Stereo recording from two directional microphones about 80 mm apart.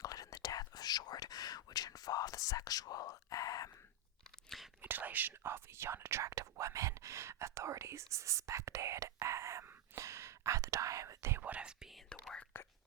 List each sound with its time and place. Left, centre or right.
0.0 s whispering: left
4.4 s whispering: centre
4.8 s whispering: right
11.4 s whispering: centre
12.5 s whispering: left